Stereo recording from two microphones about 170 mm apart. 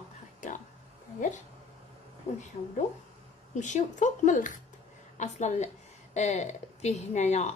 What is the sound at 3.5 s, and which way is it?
A woman's voice, 45° left (ahead or behind).